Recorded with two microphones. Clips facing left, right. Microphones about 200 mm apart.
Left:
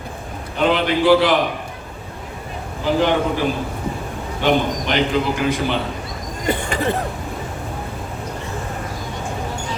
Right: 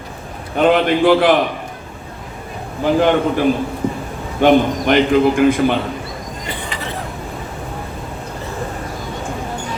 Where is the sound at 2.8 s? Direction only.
50° right (ahead or behind).